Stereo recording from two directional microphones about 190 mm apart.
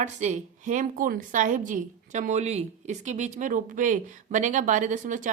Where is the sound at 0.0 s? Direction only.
40° right (ahead or behind).